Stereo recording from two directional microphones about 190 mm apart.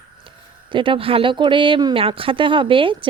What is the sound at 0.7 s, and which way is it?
A woman's voice, 25° right (ahead or behind).